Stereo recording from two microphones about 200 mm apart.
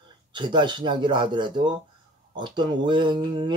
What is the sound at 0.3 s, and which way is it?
Speech, 25° right (ahead or behind).